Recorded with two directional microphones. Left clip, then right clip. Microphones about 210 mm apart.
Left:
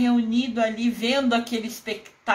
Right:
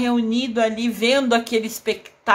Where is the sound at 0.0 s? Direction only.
35° right (ahead or behind).